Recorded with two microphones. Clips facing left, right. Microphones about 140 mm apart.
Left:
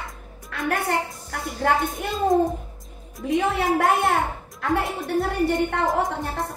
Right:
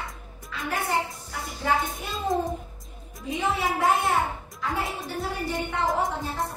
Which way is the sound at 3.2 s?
60° left (ahead or behind).